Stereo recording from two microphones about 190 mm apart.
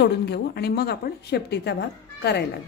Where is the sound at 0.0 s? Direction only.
60° left (ahead or behind).